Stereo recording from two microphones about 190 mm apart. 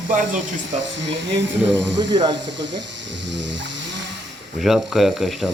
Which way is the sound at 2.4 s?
70° right (ahead or behind).